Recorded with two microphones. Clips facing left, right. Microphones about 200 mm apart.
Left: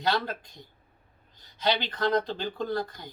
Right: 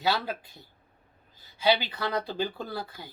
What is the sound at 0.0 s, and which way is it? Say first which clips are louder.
Speech: even; 5° right (ahead or behind).